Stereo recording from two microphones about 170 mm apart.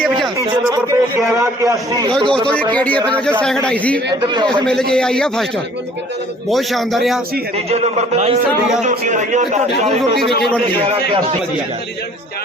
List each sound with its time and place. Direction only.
0.3 s a man's voice: 15° right (ahead or behind)
2.7 s a man's voice: 10° left (ahead or behind)
4.1 s a man's voice: 25° right (ahead or behind)
4.6 s a man's voice: 5° left (ahead or behind)
6.5 s a man's voice: centre (ahead or behind)
7.7 s a man's voice: 40° right (ahead or behind)
10.0 s a man's voice: centre (ahead or behind)